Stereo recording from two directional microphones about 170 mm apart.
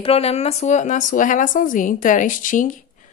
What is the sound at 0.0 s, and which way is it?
A woman's voice, 35° left (ahead or behind).